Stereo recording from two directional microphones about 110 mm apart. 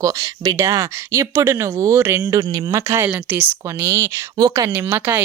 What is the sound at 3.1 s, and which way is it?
Speech, 15° right (ahead or behind).